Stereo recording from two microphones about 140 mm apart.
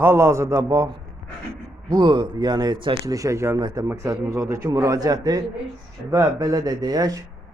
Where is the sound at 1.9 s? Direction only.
30° right (ahead or behind).